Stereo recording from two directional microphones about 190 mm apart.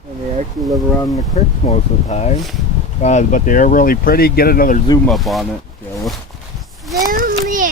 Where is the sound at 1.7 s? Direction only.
35° left (ahead or behind); by 4.7 s 50° left (ahead or behind).